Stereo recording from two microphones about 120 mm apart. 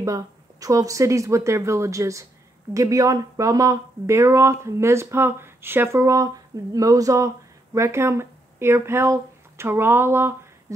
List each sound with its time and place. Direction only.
0.0 s speech: 30° right (ahead or behind)